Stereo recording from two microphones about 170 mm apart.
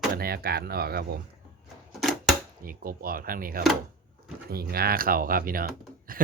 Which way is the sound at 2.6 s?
60° right (ahead or behind).